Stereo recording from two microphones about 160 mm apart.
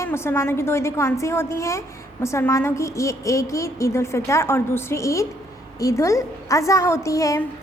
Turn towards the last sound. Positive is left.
turn(degrees=20)  # may be behind; listen again after turning